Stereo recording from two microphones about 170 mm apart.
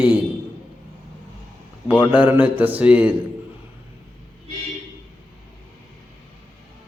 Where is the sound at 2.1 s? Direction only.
10° right (ahead or behind).